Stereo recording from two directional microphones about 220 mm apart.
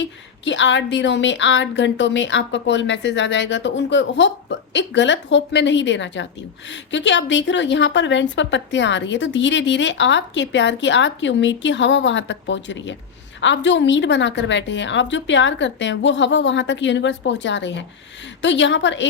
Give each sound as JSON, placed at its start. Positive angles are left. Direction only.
{"t": 0.0, "sound": "a woman's voice", "side_deg": 55}